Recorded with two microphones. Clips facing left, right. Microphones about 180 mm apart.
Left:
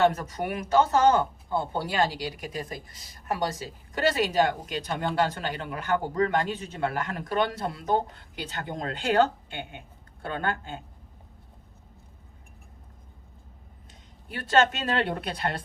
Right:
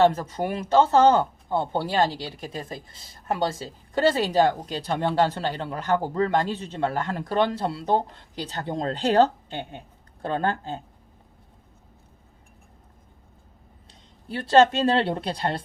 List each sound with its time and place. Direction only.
0.0 s speech: 30° right (ahead or behind)
14.3 s speech: 30° right (ahead or behind)